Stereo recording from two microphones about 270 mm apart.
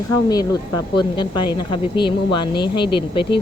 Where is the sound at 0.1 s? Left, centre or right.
Centre.